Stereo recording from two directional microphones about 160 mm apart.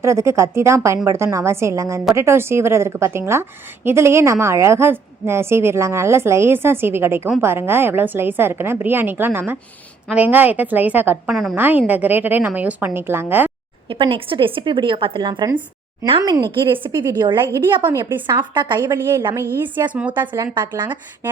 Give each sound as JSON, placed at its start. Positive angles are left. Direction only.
{"t": 0.0, "sound": "a woman's voice", "side_deg": -20}
{"t": 13.8, "sound": "a woman's voice", "side_deg": -35}
{"t": 19.9, "sound": "a woman's voice", "side_deg": -10}
{"t": 20.3, "sound": "a woman's voice", "side_deg": -25}